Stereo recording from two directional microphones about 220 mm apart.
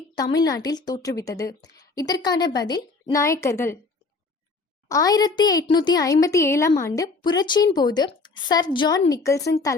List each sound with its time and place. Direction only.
0.2 s a woman's voice: 15° left (ahead or behind)
1.8 s a sound: 15° left (ahead or behind)
2.2 s a woman's voice: 20° left (ahead or behind)
4.9 s a woman's voice: 15° left (ahead or behind)